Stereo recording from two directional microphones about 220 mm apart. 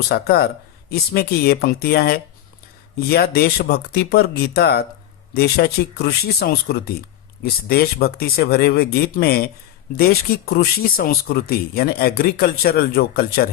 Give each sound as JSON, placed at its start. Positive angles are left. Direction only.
{"t": 0.1, "sound": "speech", "side_deg": 45}